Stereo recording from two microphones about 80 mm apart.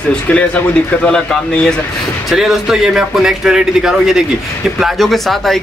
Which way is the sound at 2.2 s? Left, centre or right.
Centre.